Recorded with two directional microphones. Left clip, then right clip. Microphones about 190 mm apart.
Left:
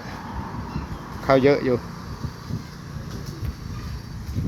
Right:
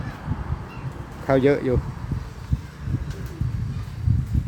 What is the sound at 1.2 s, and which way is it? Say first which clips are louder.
Speech: left 2 dB; 20° right (ahead or behind).